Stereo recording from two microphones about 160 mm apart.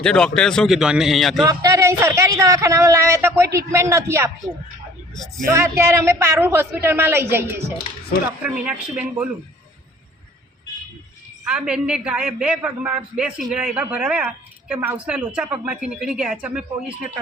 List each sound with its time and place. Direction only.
0.0 s a man's voice: 5° left (ahead or behind)
1.5 s a man's voice: 20° right (ahead or behind)
5.5 s a man's voice: 15° right (ahead or behind)
11.4 s a man's voice: 5° right (ahead or behind)